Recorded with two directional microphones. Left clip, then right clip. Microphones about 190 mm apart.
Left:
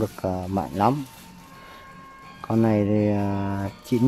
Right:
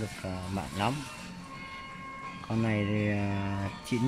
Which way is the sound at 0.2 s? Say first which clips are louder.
Left 11 dB; 30° left (ahead or behind).